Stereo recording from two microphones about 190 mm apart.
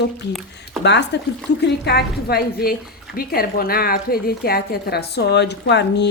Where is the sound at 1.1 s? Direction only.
65° left (ahead or behind).